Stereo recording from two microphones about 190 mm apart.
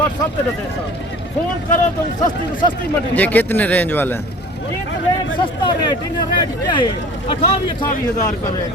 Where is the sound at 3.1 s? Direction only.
10° left (ahead or behind).